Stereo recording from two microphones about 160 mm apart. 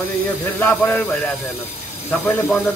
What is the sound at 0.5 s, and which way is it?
Speech, 10° left (ahead or behind).